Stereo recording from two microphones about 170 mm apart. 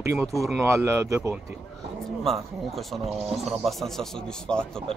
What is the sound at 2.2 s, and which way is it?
Speech, centre (ahead or behind).